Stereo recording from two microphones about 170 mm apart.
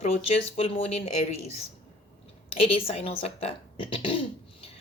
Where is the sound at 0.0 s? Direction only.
35° left (ahead or behind).